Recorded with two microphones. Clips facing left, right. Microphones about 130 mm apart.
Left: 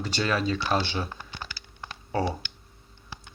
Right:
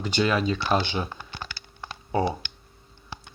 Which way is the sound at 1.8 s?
20° right (ahead or behind).